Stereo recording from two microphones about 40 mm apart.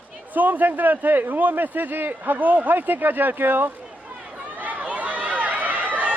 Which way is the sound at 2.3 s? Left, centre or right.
Right.